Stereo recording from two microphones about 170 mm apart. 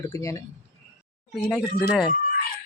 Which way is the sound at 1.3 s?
Centre (ahead or behind).